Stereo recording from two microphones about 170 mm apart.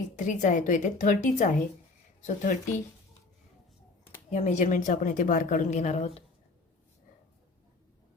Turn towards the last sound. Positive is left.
turn(degrees=35)  # may be behind; listen again after turning